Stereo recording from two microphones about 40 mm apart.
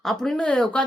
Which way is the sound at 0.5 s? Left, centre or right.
Left.